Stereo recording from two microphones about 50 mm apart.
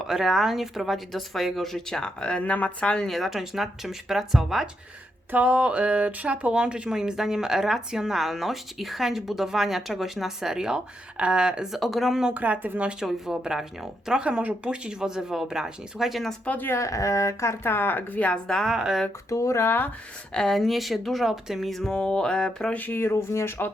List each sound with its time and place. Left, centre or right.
0.0 s speech: centre
2.4 s a sound: left
3.1 s speech: centre
5.3 s speech: right
11.7 s speech: centre
12.3 s speech: right
13.1 s speech: centre
16.6 s speech: left
19.3 s speech: left
19.6 s speech: left
20.3 s speech: centre
21.7 s speech: centre
21.9 s a sound: centre
22.7 s speech: left